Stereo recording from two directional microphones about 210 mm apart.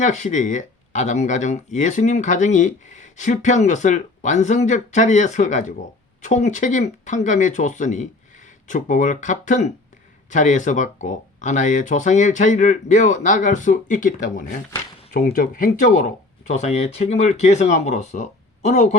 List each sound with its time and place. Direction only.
0.0 s speech: 35° left (ahead or behind)